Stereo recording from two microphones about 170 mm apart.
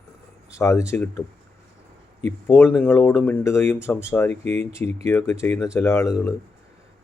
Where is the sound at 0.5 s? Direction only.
15° left (ahead or behind).